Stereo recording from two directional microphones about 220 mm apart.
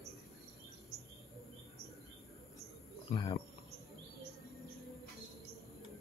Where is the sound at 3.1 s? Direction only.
20° left (ahead or behind).